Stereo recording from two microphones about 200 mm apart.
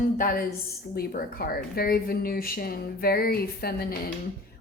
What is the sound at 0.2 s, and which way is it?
A woman's voice, 45° left (ahead or behind).